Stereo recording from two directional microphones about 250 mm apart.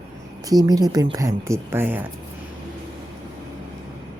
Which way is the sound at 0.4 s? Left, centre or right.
Centre.